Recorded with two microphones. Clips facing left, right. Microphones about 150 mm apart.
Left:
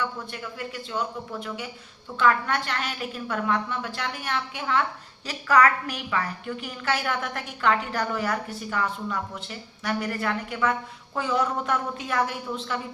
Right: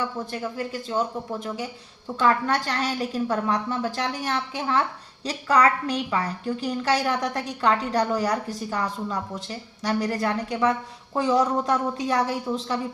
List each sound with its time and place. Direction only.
0.0 s a woman's voice: 35° right (ahead or behind)